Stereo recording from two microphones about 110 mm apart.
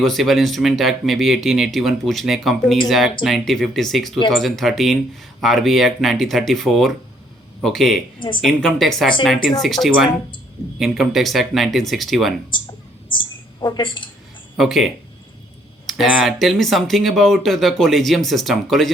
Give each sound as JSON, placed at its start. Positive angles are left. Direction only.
{"t": 0.0, "sound": "speech", "side_deg": 0}
{"t": 13.1, "sound": "a sound", "side_deg": 50}
{"t": 13.7, "sound": "speech", "side_deg": 45}
{"t": 14.5, "sound": "speech", "side_deg": 0}
{"t": 16.0, "sound": "speech", "side_deg": 0}